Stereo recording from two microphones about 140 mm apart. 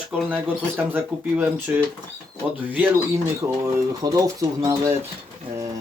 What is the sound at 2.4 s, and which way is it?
Speech, 10° right (ahead or behind).